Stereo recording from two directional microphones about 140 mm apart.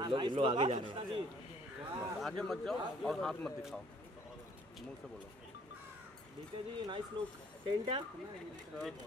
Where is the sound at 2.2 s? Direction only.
Centre (ahead or behind).